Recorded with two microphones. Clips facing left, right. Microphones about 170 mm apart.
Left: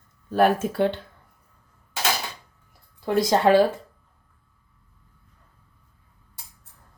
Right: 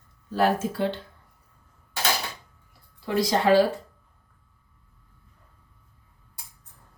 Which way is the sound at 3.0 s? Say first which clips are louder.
Left 2 dB; 50° left (ahead or behind).